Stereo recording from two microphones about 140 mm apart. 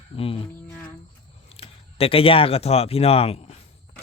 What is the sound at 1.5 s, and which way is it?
Speech, 45° left (ahead or behind).